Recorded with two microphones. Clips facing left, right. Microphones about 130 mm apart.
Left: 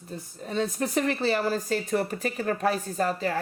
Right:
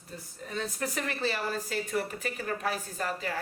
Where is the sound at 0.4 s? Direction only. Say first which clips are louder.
Left 6 dB; 25° left (ahead or behind).